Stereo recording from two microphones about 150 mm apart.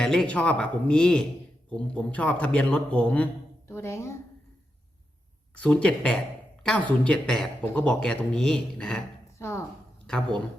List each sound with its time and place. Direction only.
0.0 s a man's voice: 5° left (ahead or behind)
5.5 s a man's voice: 5° left (ahead or behind)
9.4 s a man's voice: 15° left (ahead or behind)